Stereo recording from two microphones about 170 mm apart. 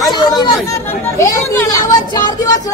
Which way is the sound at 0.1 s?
25° left (ahead or behind).